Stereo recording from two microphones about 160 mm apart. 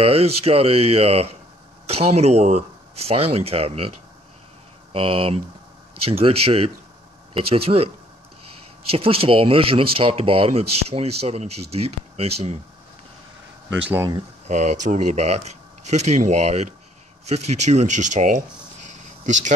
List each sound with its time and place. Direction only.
0.0 s speech: 40° right (ahead or behind)
4.9 s speech: 35° right (ahead or behind)
8.9 s speech: 35° right (ahead or behind)
13.7 s speech: 10° right (ahead or behind)
14.5 s speech: 45° right (ahead or behind)